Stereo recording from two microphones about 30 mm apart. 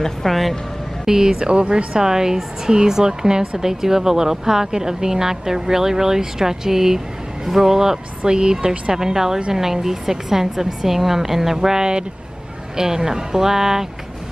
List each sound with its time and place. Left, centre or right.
0.0 s speech: centre
1.0 s speech: centre
1.5 s speech: right
2.0 s speech: centre
8.3 s speech: right
8.9 s speech: centre